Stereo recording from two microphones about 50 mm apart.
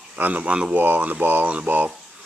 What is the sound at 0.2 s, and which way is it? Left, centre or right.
Speech, right.